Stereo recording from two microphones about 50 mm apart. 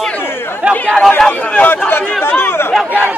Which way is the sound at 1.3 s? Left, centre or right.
Left.